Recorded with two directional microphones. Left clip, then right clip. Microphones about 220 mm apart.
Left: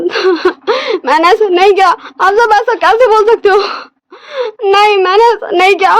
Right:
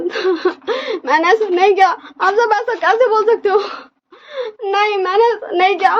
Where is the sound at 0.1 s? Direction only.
50° left (ahead or behind).